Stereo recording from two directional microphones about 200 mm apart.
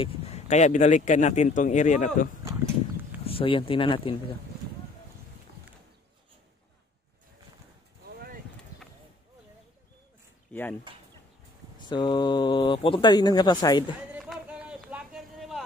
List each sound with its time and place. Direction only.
0.0 s speech: 35° left (ahead or behind)
3.3 s speech: 25° left (ahead or behind)
10.5 s speech: 10° left (ahead or behind)
11.9 s speech: 20° left (ahead or behind)
14.1 s a sound: 5° right (ahead or behind)